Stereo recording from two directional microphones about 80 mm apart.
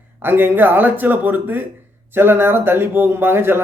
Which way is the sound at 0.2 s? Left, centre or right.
Right.